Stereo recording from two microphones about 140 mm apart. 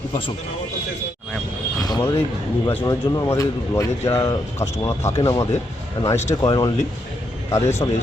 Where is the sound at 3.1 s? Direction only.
25° left (ahead or behind).